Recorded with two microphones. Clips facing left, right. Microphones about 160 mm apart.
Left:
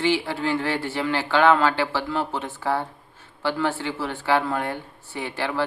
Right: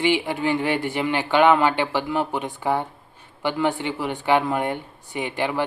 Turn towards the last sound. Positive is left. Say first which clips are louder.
# right 3 dB
turn(degrees=-15)  # may be behind; listen again after turning